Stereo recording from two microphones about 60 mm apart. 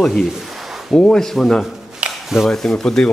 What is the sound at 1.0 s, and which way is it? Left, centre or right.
Speech, centre.